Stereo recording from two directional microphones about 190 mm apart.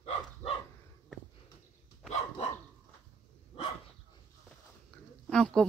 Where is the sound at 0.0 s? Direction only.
30° left (ahead or behind).